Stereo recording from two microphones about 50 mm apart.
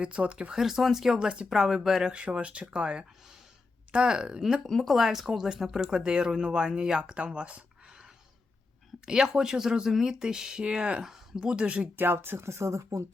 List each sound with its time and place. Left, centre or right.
0.0 s speech: right
0.5 s speech: centre
2.0 s speech: right
4.6 s speech: centre; by 11.9 s right
11.9 s speech: right
12.5 s speech: right